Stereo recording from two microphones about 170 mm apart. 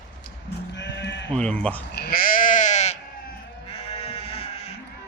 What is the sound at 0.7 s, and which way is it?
Sheep, 90° left.